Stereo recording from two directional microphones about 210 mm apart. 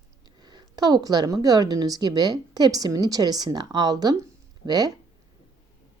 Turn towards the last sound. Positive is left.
turn(degrees=-20)  # may be behind; listen again after turning